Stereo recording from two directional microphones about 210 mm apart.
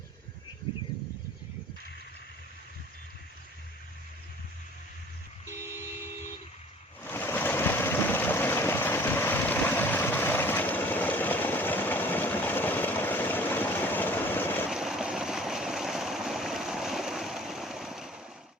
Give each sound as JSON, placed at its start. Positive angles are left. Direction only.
{"t": 5.5, "sound": "vehicle", "side_deg": -15}
{"t": 7.0, "sound": "vehicle", "side_deg": 10}
{"t": 14.7, "sound": "stream", "side_deg": 0}